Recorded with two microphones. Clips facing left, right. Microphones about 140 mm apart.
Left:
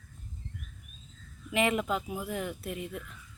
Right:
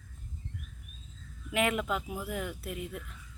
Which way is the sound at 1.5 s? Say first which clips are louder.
Left 2 dB; centre (ahead or behind).